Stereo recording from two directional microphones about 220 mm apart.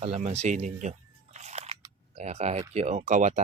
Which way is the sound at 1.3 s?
30° right (ahead or behind).